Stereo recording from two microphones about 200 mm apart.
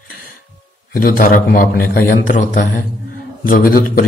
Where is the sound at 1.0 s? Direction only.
45° left (ahead or behind).